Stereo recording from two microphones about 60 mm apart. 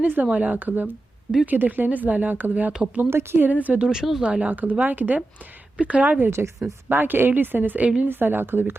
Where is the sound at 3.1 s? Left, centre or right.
Right.